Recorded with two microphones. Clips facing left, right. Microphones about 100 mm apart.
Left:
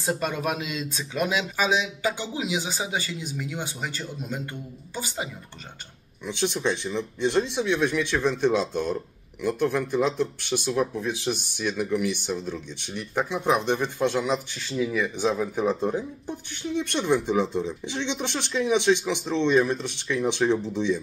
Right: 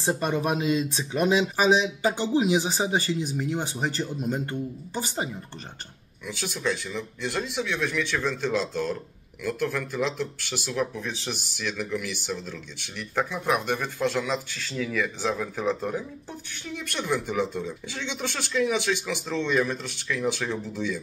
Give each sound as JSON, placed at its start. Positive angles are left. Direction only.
{"t": 0.0, "sound": "speech", "side_deg": -25}
{"t": 6.2, "sound": "speech", "side_deg": 25}